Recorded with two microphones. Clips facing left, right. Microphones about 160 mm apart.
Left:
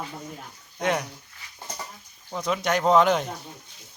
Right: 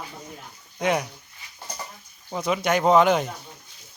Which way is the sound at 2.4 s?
5° right (ahead or behind).